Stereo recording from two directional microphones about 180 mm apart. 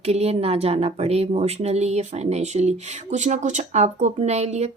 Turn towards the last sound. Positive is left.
turn(degrees=-35)  # may be behind; listen again after turning